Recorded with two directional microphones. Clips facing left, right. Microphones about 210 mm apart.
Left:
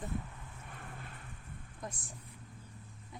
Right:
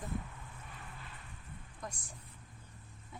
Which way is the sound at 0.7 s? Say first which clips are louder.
Left 6 dB; 55° left (ahead or behind).